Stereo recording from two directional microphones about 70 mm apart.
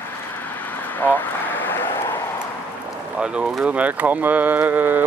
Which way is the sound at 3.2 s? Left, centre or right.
Centre.